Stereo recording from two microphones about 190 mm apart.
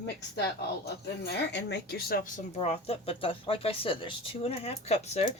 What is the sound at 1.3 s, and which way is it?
Speech, 60° left (ahead or behind).